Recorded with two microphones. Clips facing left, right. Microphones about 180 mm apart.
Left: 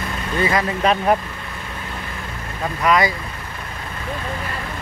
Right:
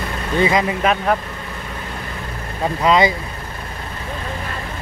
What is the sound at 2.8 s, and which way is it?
Speech, 25° right (ahead or behind).